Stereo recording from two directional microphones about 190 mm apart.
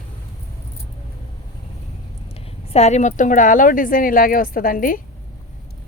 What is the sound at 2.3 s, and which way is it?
A woman's voice, 35° left (ahead or behind).